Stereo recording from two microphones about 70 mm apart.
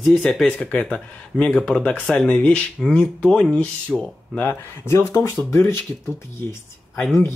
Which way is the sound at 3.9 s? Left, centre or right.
Centre.